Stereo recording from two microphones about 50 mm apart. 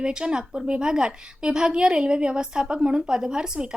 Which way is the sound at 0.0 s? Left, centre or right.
Centre.